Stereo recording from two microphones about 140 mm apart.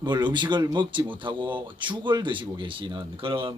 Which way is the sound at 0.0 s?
30° right (ahead or behind).